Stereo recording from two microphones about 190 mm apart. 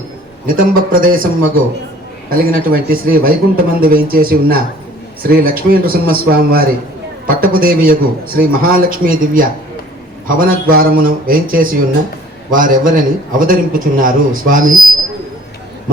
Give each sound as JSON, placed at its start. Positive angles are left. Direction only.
{"t": 0.4, "sound": "a man's voice", "side_deg": -50}